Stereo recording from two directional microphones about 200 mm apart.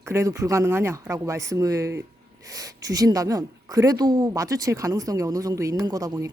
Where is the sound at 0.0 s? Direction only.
15° right (ahead or behind).